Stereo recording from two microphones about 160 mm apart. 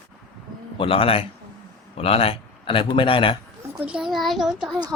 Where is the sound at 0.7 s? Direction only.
35° left (ahead or behind).